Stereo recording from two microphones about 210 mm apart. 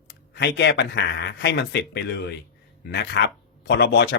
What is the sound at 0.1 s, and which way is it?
Speech, 55° left (ahead or behind).